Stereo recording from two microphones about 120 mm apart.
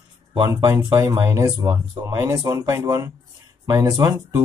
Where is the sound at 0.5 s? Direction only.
25° right (ahead or behind).